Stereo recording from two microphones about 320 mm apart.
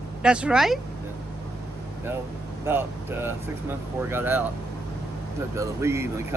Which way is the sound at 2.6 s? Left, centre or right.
Centre.